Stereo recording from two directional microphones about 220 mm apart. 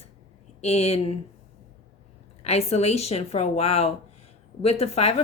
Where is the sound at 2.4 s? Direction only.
30° left (ahead or behind).